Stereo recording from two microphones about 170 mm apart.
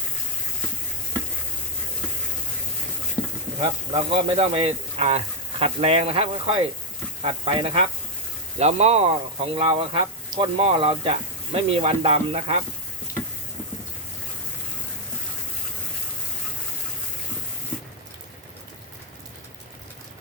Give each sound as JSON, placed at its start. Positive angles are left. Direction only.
{"t": 3.6, "sound": "speech", "side_deg": -30}
{"t": 10.2, "sound": "a sound", "side_deg": -25}
{"t": 10.6, "sound": "speech", "side_deg": -35}